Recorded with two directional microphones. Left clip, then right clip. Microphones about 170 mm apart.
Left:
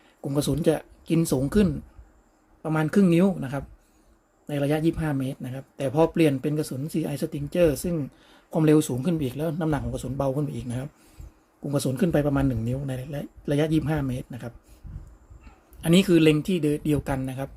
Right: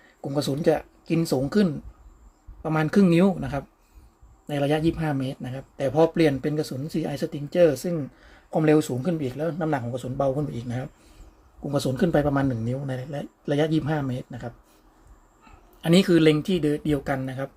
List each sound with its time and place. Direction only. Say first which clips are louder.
0.3 s speech: right 1 dB; 20° left (ahead or behind)
15.8 s speech: right 1 dB; 10° left (ahead or behind)